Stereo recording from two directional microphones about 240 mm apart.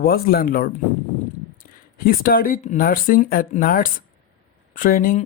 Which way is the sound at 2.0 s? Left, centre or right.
Left.